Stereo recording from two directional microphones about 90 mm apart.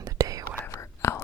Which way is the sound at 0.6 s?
30° left (ahead or behind).